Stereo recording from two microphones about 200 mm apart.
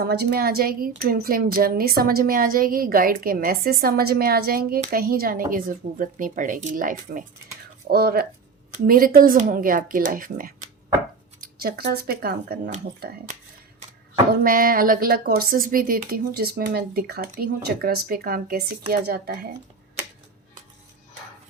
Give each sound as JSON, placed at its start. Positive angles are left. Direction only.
{"t": 0.0, "sound": "speech", "side_deg": -50}
{"t": 14.4, "sound": "speech", "side_deg": -45}